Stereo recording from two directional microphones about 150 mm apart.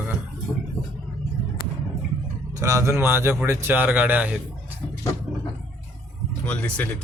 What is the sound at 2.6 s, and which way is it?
Speech, 20° right (ahead or behind).